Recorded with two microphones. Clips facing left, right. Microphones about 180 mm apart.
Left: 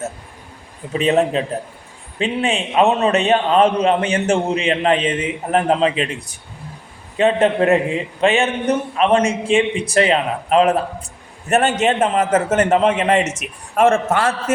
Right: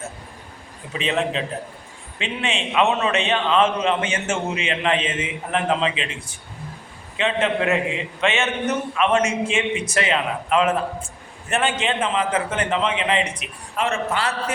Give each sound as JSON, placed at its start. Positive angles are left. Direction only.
{"t": 0.9, "sound": "a man's voice", "side_deg": 40}